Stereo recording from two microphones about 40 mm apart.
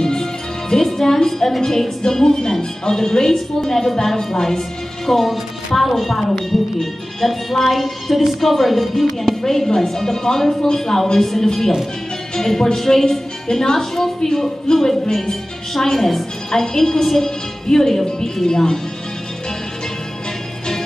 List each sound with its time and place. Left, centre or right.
0.0 s a woman's voice: centre